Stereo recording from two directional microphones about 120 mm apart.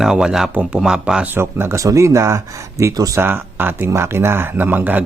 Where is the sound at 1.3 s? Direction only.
20° right (ahead or behind).